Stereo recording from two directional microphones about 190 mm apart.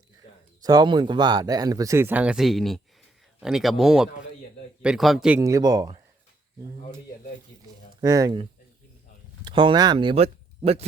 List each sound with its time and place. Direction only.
0.6 s speech: 20° right (ahead or behind); by 5.4 s 5° right (ahead or behind)
5.4 s speech: 15° right (ahead or behind)
8.0 s speech: 20° right (ahead or behind)